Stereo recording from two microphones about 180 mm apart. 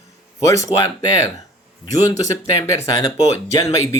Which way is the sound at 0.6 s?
15° left (ahead or behind).